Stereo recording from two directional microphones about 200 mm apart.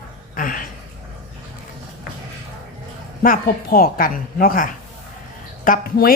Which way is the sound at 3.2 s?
45° left (ahead or behind).